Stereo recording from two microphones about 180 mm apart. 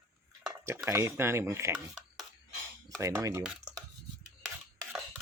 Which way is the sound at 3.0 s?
20° right (ahead or behind).